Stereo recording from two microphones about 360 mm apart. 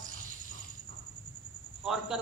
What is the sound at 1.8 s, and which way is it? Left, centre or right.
Speech, centre.